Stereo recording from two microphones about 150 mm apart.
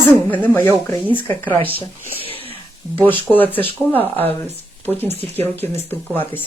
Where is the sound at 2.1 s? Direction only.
40° left (ahead or behind).